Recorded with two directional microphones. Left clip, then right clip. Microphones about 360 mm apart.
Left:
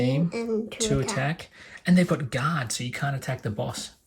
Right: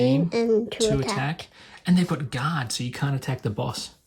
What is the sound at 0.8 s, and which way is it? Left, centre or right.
Speech, centre.